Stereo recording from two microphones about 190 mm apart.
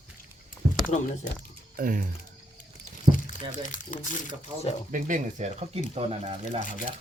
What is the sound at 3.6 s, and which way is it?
Speech, 45° left (ahead or behind).